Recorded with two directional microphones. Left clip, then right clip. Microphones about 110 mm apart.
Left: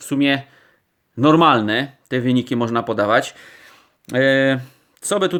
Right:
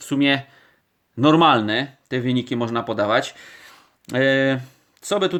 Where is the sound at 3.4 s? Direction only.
10° left (ahead or behind).